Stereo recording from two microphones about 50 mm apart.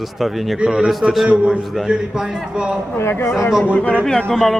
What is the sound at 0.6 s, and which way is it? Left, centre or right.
Speech, centre.